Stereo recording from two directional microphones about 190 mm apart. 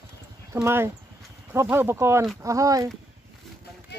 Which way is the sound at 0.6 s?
10° right (ahead or behind).